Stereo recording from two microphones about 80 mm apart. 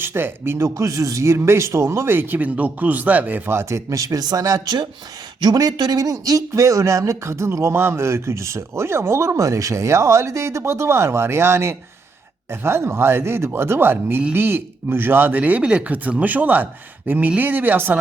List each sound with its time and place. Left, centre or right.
0.0 s speech: right
0.7 s speech: right